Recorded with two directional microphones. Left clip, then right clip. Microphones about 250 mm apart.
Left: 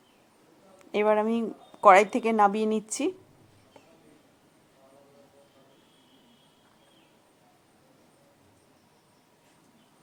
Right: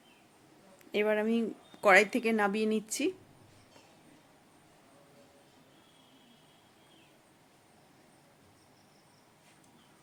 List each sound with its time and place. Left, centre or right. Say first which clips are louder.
0.9 s a woman's voice: left 6 dB; centre